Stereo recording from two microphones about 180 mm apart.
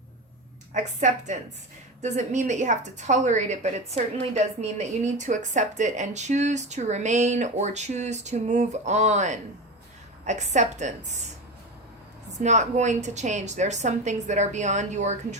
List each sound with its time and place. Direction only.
0.7 s speech: 45° right (ahead or behind)
12.4 s speech: 40° right (ahead or behind)